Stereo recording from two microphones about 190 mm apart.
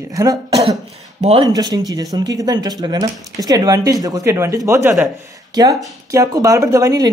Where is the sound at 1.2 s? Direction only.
30° right (ahead or behind).